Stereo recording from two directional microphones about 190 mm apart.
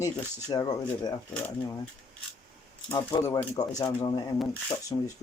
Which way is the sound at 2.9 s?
15° left (ahead or behind).